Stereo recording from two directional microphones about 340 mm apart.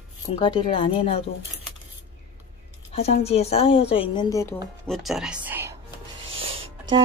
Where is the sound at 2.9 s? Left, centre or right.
Centre.